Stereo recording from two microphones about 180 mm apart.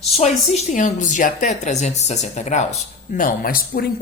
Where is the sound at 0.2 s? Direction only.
40° left (ahead or behind).